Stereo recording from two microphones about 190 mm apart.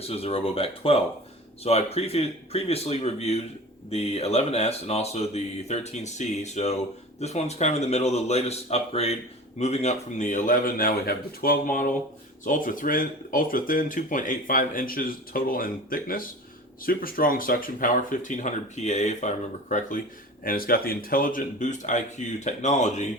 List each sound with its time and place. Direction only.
0.1 s speech: 30° left (ahead or behind)